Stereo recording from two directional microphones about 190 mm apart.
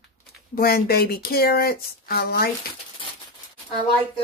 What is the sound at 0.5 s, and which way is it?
Speech, 55° left (ahead or behind).